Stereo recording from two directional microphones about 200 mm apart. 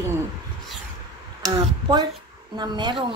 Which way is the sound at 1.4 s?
20° right (ahead or behind).